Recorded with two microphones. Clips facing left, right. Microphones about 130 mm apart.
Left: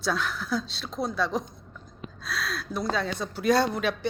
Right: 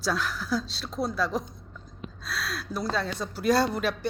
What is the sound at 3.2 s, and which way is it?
Speech, 5° right (ahead or behind).